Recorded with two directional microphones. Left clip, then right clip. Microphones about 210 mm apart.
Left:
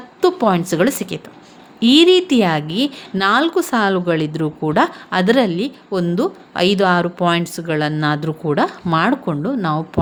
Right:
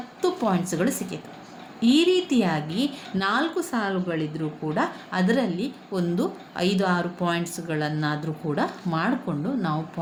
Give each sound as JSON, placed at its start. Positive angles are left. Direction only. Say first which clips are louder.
{"t": 0.2, "sound": "a woman's voice", "louder": "left 9 dB", "side_deg": 45}